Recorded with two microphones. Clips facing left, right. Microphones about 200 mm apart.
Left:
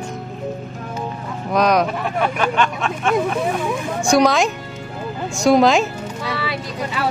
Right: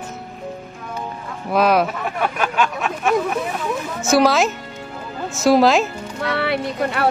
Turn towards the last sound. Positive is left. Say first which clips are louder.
# right 4 dB
turn(degrees=-60)  # may be behind; listen again after turning